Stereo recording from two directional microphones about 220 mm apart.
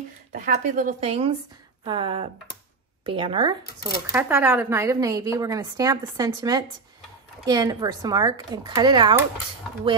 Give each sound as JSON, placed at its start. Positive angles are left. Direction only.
{"t": 0.3, "sound": "speech", "side_deg": -35}
{"t": 4.1, "sound": "a woman's voice", "side_deg": -10}